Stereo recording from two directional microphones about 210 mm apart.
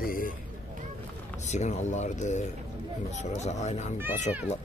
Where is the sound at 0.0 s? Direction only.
40° left (ahead or behind).